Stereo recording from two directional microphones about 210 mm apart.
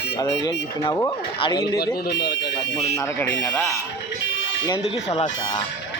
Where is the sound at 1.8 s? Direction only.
50° left (ahead or behind).